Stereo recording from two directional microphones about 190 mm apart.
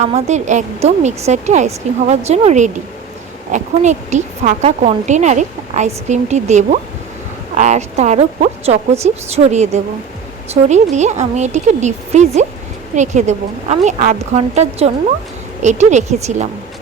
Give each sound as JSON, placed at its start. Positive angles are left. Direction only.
{"t": 0.0, "sound": "a woman's voice", "side_deg": -35}